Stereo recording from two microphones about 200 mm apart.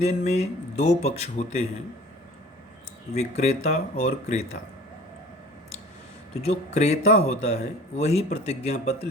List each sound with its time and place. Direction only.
0.0 s speech: 35° left (ahead or behind)
3.2 s speech: 35° left (ahead or behind)
6.4 s speech: 30° left (ahead or behind)